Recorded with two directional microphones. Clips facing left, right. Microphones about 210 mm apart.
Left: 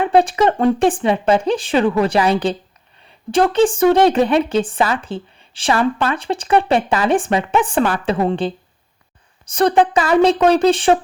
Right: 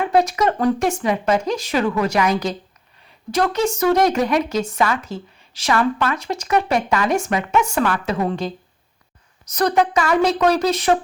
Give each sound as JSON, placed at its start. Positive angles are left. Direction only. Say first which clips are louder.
{"t": 0.0, "sound": "a woman's voice", "louder": "left 3 dB", "side_deg": 30}